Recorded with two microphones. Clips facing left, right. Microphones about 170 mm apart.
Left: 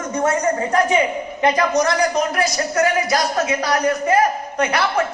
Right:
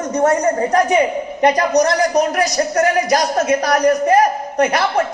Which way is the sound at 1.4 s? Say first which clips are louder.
Right 3 dB; 40° right (ahead or behind).